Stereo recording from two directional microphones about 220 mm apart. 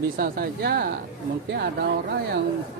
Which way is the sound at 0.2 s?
45° right (ahead or behind).